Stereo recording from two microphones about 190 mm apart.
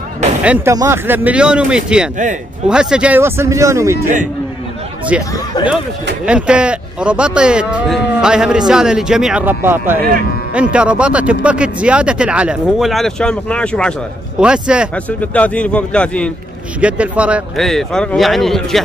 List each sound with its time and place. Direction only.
0.4 s a man's voice: 5° right (ahead or behind)
5.3 s speech: 20° left (ahead or behind)
6.2 s a man's voice: 5° right (ahead or behind)
15.0 s speech: 5° left (ahead or behind)
16.8 s speech: 5° right (ahead or behind)